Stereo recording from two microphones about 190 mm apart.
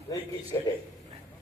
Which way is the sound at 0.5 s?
15° left (ahead or behind).